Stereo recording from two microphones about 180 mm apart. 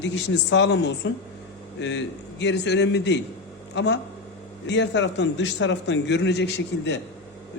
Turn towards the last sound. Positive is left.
turn(degrees=70)  # may be behind; listen again after turning